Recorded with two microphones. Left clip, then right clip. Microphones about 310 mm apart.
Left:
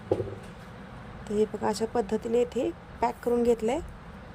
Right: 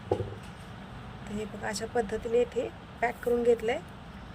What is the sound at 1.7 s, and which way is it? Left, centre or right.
Speech, centre.